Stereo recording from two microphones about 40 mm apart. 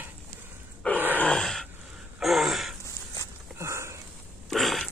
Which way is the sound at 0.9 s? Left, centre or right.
Right.